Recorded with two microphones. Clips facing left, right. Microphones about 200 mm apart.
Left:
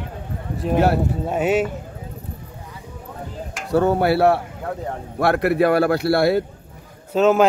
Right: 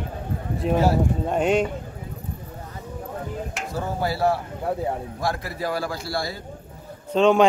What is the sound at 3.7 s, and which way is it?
Speech, 65° left (ahead or behind).